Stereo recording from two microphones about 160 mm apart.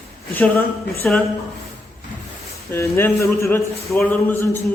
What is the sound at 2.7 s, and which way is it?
A man's voice, 15° left (ahead or behind).